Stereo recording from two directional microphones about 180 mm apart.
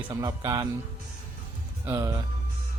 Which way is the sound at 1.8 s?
20° right (ahead or behind).